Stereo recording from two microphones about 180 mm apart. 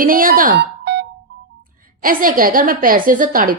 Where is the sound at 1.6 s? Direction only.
50° right (ahead or behind).